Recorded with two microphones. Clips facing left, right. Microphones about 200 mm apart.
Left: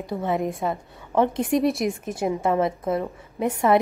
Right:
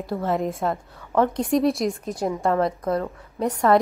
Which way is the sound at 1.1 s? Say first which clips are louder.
Even; 20° left (ahead or behind).